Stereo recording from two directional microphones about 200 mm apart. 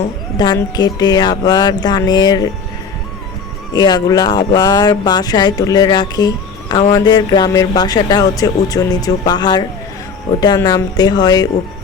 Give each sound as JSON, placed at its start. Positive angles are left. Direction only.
{"t": 0.3, "sound": "speech", "side_deg": 20}
{"t": 3.7, "sound": "speech", "side_deg": 20}